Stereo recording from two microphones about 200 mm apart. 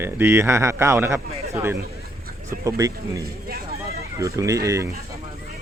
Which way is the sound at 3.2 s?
50° right (ahead or behind).